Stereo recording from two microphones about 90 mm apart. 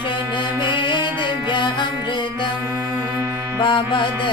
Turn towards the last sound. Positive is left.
turn(degrees=65)  # may be behind; listen again after turning